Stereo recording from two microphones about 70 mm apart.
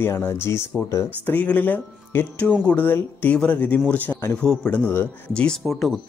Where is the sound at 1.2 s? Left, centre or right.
Left.